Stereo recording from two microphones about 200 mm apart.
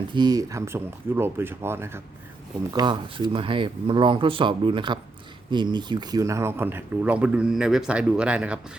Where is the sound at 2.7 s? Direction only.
20° right (ahead or behind).